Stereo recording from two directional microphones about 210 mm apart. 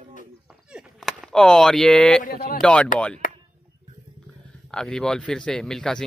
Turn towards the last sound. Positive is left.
turn(degrees=5)  # may be behind; listen again after turning